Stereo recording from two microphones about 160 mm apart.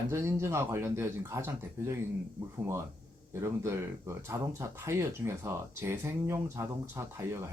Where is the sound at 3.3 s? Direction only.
15° right (ahead or behind).